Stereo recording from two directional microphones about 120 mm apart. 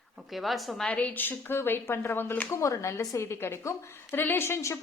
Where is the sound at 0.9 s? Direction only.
15° left (ahead or behind).